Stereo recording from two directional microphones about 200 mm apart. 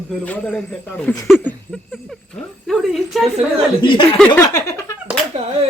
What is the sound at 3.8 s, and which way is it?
Speech, 25° left (ahead or behind).